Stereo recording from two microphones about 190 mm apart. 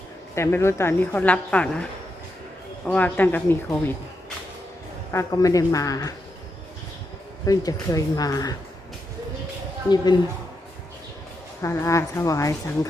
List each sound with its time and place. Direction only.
0.3 s a woman's voice: 15° left (ahead or behind)
5.1 s a woman's voice: 15° left (ahead or behind)
7.4 s a woman's voice: 20° left (ahead or behind)
9.9 s a woman's voice: 20° left (ahead or behind)
11.6 s a woman's voice: 15° left (ahead or behind)